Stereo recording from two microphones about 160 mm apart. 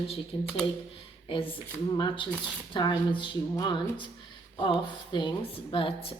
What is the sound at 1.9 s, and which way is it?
A woman's voice, 30° left (ahead or behind).